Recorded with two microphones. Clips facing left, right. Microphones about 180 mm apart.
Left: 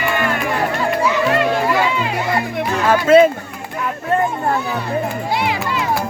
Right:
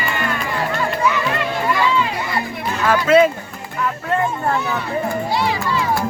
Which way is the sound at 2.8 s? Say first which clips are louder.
Left 3 dB; 30° left (ahead or behind).